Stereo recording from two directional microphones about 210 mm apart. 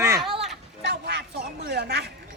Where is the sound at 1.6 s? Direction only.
50° right (ahead or behind).